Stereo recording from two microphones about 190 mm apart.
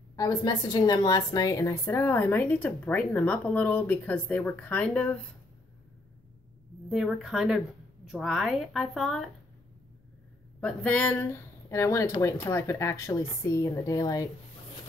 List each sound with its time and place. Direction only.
0.1 s a woman's voice: 20° left (ahead or behind)
6.9 s speech: centre (ahead or behind)
10.6 s a woman's voice: 5° left (ahead or behind)